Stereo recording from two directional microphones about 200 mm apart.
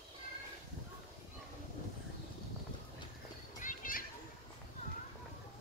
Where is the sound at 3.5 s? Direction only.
40° left (ahead or behind).